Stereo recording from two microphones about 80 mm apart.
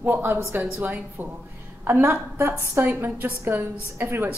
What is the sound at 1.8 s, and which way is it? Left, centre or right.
A woman's voice, right.